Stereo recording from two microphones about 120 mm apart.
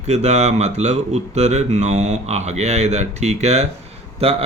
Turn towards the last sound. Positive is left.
turn(degrees=-55)  # may be behind; listen again after turning